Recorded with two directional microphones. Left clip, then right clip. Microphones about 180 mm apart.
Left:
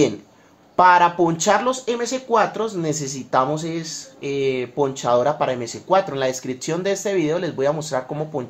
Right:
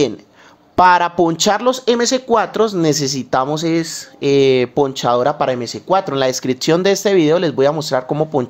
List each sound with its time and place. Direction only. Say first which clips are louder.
0.7 s speech: right 2 dB; 45° right (ahead or behind)